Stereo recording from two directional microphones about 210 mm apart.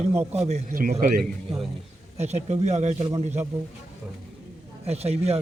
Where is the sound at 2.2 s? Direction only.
30° right (ahead or behind).